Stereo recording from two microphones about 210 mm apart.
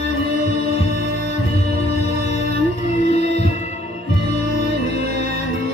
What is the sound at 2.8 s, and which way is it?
Music, 30° left (ahead or behind).